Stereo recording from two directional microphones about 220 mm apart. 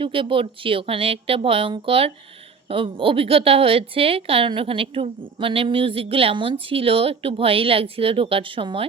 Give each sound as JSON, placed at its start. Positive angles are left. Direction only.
{"t": 0.0, "sound": "a woman's voice", "side_deg": -25}